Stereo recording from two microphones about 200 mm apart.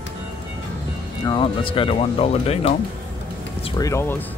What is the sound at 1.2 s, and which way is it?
Speech, 25° left (ahead or behind).